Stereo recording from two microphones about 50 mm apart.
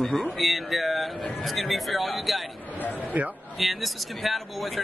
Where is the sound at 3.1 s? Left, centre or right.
Right.